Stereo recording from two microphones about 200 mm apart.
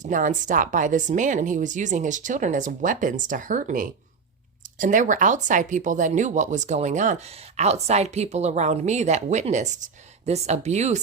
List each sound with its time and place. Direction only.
0.0 s speech: 40° right (ahead or behind)